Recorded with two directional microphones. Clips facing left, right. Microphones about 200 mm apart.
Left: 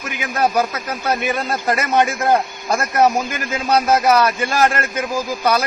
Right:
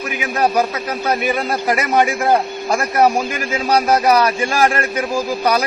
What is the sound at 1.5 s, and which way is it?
A man's voice, 15° right (ahead or behind).